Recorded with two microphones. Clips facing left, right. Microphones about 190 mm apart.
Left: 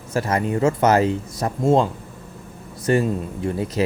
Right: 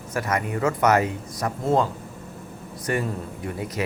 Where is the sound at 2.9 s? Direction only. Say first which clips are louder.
Left 7 dB; 30° left (ahead or behind).